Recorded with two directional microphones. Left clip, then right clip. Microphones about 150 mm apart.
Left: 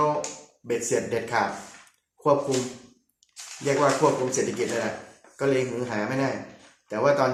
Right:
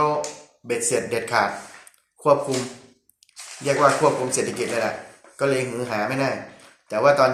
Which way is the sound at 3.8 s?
10° right (ahead or behind).